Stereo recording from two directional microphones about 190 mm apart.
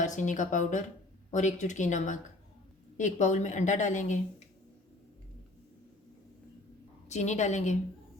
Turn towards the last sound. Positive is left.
turn(degrees=40)  # may be behind; listen again after turning